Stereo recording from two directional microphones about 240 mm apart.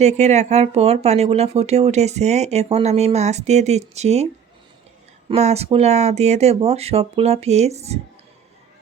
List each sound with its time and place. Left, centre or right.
0.0 s speech: right
5.3 s speech: right